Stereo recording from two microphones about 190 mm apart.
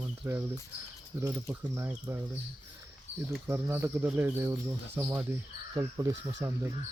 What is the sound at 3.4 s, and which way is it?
Speech, 10° right (ahead or behind).